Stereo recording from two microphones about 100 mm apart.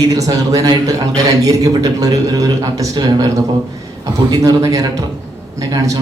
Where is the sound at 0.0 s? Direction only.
35° right (ahead or behind).